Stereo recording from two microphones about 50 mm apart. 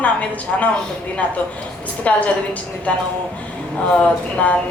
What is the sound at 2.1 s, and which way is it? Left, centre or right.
Speech, left.